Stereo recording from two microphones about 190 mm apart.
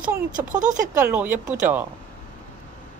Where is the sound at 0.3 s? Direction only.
45° right (ahead or behind).